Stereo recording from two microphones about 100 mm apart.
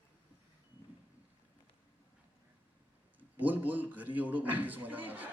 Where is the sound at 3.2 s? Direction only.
15° right (ahead or behind).